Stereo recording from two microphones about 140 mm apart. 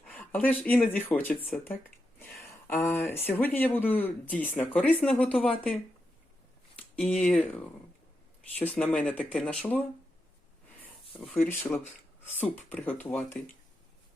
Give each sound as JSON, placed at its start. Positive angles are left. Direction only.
{"t": 0.1, "sound": "speech", "side_deg": 10}
{"t": 6.9, "sound": "speech", "side_deg": 10}
{"t": 8.5, "sound": "speech", "side_deg": 10}
{"t": 11.3, "sound": "speech", "side_deg": 15}